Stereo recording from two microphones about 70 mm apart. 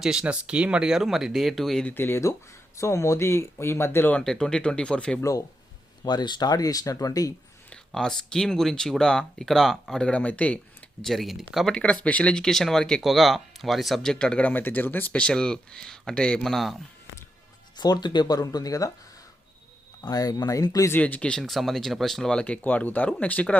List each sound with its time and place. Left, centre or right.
0.0 s speech: centre
1.9 s speech: left
4.2 s speech: centre
6.1 s speech: left
7.7 s speech: centre
10.1 s speech: left
11.0 s speech: centre
11.7 s speech: centre
14.5 s speech: left
15.3 s speech: centre
17.7 s speech: left
20.0 s speech: left
21.0 s speech: centre
21.4 s speech: centre